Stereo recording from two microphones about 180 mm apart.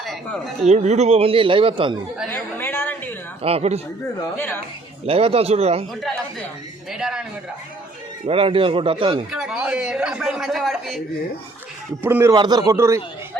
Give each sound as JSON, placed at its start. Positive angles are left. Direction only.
{"t": 0.0, "sound": "a sound", "side_deg": 0}
{"t": 0.6, "sound": "speech", "side_deg": -40}
{"t": 2.3, "sound": "chatter", "side_deg": 10}
{"t": 3.4, "sound": "speech", "side_deg": -35}
{"t": 4.4, "sound": "a woman's voice", "side_deg": 10}
{"t": 5.0, "sound": "speech", "side_deg": -35}
{"t": 6.9, "sound": "a man's voice", "side_deg": -5}
{"t": 8.3, "sound": "speech", "side_deg": -30}
{"t": 9.3, "sound": "a man's voice", "side_deg": -5}
{"t": 12.0, "sound": "a man's voice", "side_deg": -15}